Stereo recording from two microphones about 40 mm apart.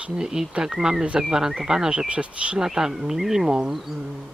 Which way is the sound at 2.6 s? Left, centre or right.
Centre.